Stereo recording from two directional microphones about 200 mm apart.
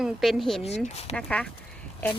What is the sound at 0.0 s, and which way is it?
A woman's voice, centre (ahead or behind).